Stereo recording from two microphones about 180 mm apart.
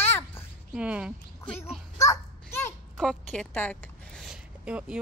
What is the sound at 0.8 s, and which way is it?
Speech, 5° right (ahead or behind).